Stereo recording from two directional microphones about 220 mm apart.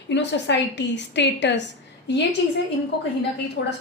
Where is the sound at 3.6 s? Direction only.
55° left (ahead or behind).